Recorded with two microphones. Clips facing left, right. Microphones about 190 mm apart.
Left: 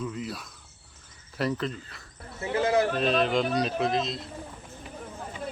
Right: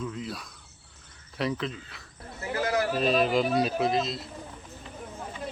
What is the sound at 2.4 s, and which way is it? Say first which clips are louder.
Speech: left 4 dB; 25° left (ahead or behind).